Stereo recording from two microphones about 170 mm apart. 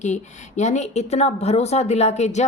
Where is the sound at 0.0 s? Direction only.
45° left (ahead or behind).